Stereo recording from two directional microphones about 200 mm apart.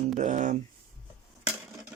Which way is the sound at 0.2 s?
40° right (ahead or behind).